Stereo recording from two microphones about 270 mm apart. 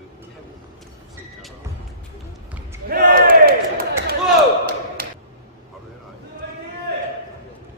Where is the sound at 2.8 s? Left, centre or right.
Right.